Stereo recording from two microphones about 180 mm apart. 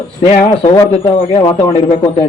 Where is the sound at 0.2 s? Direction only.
30° left (ahead or behind).